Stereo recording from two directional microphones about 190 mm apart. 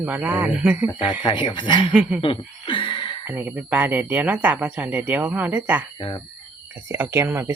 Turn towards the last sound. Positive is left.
turn(degrees=-10)  # may be behind; listen again after turning